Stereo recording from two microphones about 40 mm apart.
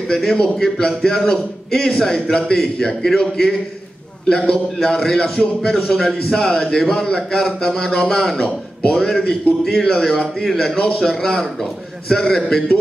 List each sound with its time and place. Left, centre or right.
0.1 s a man's voice: centre
4.8 s a man's voice: centre
10.8 s a man's voice: left
11.1 s a man's voice: centre